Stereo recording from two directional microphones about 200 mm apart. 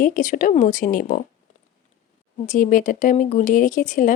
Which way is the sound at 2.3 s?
40° left (ahead or behind).